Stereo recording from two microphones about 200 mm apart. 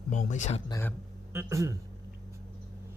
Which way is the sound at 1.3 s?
15° right (ahead or behind).